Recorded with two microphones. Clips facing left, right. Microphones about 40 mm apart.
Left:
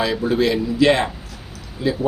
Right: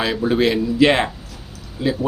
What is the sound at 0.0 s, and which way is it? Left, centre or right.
A man's voice, right.